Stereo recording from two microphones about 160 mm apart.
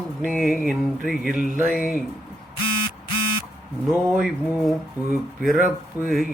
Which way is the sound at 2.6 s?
30° left (ahead or behind).